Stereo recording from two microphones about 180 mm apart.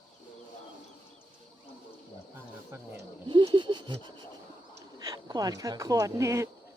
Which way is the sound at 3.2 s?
25° right (ahead or behind).